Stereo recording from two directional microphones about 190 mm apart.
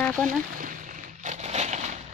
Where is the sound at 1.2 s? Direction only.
35° right (ahead or behind).